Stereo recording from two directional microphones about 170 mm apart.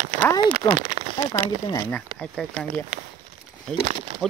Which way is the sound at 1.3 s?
20° left (ahead or behind).